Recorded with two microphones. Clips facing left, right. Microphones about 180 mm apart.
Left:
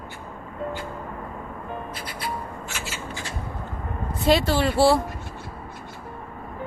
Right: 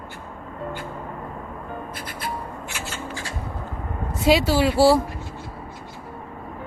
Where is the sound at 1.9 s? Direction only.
50° right (ahead or behind).